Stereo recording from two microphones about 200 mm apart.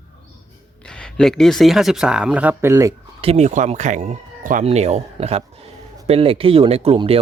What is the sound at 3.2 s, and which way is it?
Speech, 30° right (ahead or behind).